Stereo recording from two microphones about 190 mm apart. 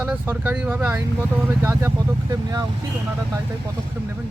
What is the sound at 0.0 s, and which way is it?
Speech, 10° right (ahead or behind).